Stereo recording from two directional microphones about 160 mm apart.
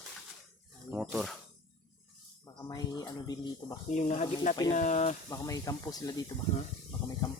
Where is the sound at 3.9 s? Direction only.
45° left (ahead or behind).